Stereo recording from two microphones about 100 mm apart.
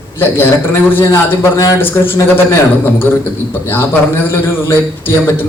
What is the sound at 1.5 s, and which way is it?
Speech, 35° left (ahead or behind).